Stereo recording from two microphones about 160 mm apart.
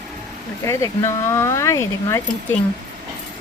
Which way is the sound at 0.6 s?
20° left (ahead or behind).